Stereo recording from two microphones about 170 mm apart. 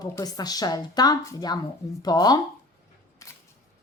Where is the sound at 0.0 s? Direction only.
20° left (ahead or behind).